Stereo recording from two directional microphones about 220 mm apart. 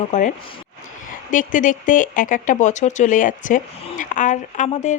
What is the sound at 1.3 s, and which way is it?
Speech, 35° left (ahead or behind).